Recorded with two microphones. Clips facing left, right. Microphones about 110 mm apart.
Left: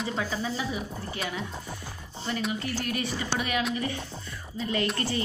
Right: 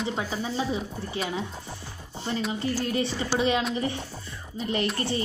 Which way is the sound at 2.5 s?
25° right (ahead or behind).